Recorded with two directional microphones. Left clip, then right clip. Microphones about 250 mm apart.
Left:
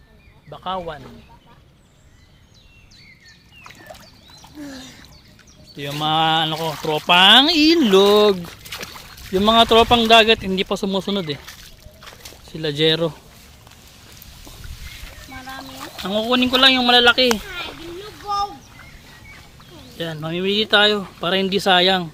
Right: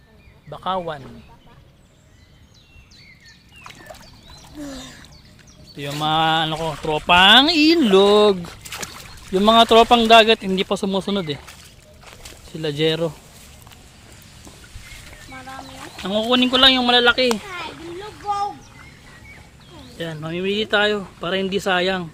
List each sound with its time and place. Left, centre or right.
0.5 s bird: centre
0.8 s speech: centre
3.8 s a sound: centre
4.6 s bird: centre
5.6 s bird: centre
6.0 s speech: centre
12.5 s speech: centre
15.3 s chicken: left
16.0 s speech: centre
17.7 s splash: left
20.0 s speech: centre